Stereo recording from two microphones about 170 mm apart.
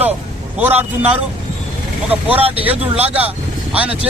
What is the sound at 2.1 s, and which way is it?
Speech, 10° right (ahead or behind).